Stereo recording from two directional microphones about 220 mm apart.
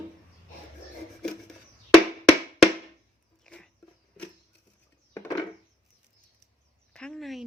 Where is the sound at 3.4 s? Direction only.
Centre (ahead or behind).